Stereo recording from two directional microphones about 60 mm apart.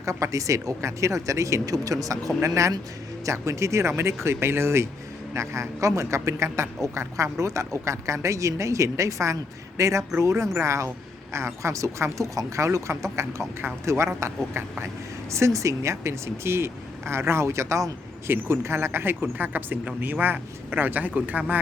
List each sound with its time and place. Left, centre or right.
0.0 s speech: right
3.2 s speech: right
15.3 s speech: right
18.3 s speech: right